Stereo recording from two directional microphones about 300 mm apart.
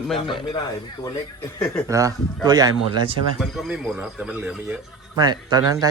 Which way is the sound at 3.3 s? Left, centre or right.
Centre.